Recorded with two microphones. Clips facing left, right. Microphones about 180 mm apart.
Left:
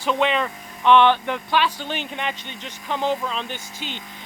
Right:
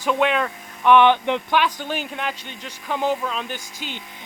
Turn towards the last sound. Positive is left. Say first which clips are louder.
# even
turn(degrees=-10)  # may be behind; listen again after turning